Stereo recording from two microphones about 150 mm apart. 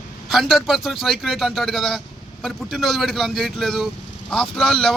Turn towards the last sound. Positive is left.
turn(degrees=0)  # may be behind; listen again after turning